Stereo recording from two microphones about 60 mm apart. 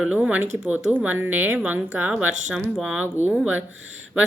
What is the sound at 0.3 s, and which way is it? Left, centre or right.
A woman's voice, right.